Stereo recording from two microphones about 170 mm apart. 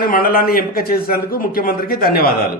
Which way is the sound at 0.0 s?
60° left (ahead or behind).